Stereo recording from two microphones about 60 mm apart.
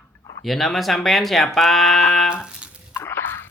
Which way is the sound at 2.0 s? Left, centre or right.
Centre.